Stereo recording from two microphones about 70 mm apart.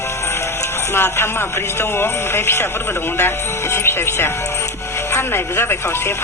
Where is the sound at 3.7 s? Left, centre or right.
Left.